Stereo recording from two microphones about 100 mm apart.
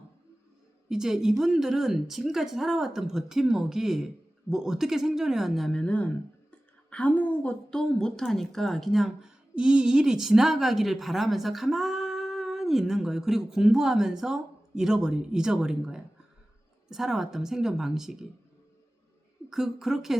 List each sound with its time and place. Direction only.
0.9 s a woman's voice: 5° right (ahead or behind)
19.5 s a woman's voice: 5° right (ahead or behind)